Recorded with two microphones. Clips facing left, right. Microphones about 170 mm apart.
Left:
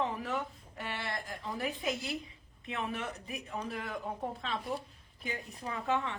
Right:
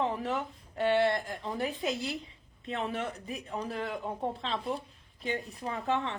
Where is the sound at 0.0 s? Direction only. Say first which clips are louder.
Right 4 dB; 30° right (ahead or behind).